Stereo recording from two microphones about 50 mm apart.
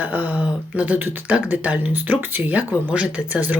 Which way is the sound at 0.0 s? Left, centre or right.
Right.